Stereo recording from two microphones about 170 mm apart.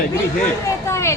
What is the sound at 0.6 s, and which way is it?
Speech, 15° left (ahead or behind).